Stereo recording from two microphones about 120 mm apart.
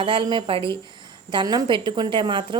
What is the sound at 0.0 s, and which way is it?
Speech, 45° right (ahead or behind).